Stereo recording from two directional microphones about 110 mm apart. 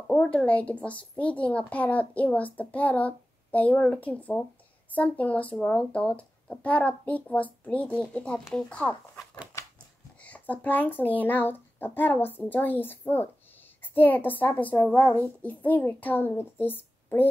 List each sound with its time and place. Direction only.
0.1 s a child's voice: 10° left (ahead or behind)
9.5 s scissors: 25° left (ahead or behind)
10.2 s a child's voice: 15° left (ahead or behind)